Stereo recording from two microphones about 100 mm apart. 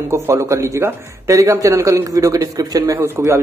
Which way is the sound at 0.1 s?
30° right (ahead or behind).